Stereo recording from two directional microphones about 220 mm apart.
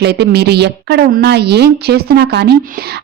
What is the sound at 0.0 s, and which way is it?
A woman's voice, 50° right (ahead or behind).